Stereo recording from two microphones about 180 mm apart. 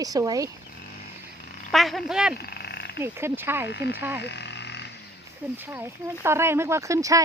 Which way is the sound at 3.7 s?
70° left (ahead or behind).